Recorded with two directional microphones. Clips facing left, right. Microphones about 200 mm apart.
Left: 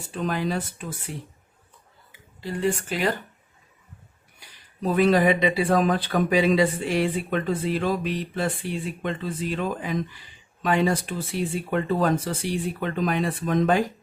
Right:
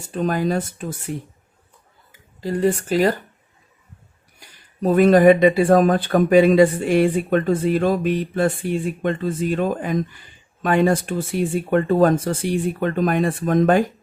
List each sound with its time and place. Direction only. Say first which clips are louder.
0.1 s speech: right 6 dB; 45° right (ahead or behind)
2.4 s speech: right 6 dB; 40° right (ahead or behind)
4.4 s speech: right 6 dB; 45° right (ahead or behind)